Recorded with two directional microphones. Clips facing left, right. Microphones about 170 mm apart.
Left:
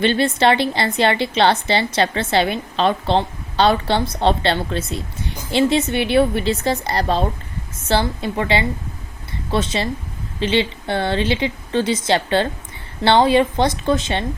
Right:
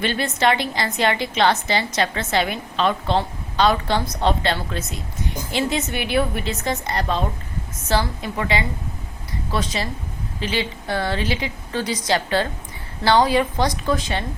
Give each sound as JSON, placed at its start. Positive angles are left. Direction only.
{"t": 0.0, "sound": "a woman's voice", "side_deg": 30}